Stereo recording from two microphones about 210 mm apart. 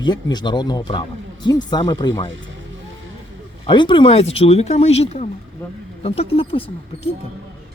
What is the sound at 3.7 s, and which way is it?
Speech, 25° left (ahead or behind).